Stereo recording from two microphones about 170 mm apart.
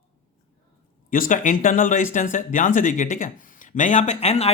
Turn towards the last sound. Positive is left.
turn(degrees=40)  # may be behind; listen again after turning